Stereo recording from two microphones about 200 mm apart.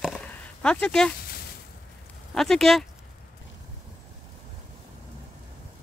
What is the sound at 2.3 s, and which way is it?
Speech, centre (ahead or behind).